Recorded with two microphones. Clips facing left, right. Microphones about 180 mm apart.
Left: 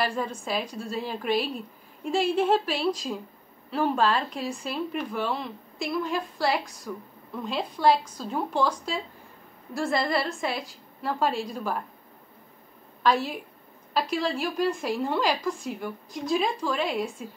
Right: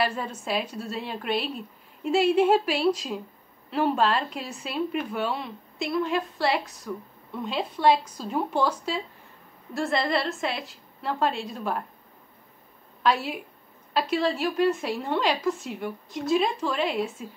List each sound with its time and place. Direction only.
0.0 s a woman's voice: 5° right (ahead or behind)
13.0 s a woman's voice: 5° right (ahead or behind)